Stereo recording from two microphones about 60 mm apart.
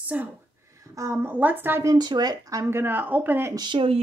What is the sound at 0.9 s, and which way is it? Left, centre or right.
Speech, right.